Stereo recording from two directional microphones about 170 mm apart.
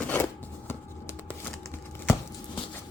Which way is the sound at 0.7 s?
15° left (ahead or behind).